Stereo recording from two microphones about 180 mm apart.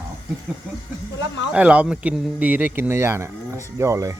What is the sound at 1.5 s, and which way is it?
Speech, 5° right (ahead or behind).